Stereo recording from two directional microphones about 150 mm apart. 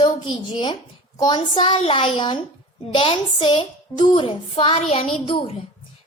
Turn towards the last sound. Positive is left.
turn(degrees=40)  # may be behind; listen again after turning